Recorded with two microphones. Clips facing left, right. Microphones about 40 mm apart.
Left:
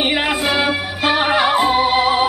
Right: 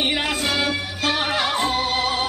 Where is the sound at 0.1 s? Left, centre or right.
Centre.